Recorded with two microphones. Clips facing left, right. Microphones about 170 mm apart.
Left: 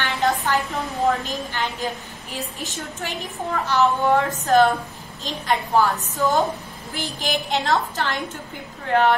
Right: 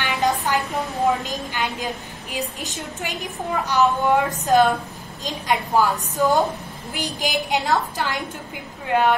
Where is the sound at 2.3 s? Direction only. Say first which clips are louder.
Right 2 dB; 15° right (ahead or behind).